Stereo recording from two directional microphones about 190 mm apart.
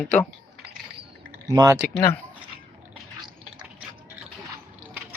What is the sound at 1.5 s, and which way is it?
Speech, 20° right (ahead or behind).